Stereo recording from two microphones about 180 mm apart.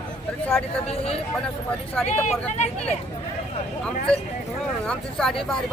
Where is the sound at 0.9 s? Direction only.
35° left (ahead or behind).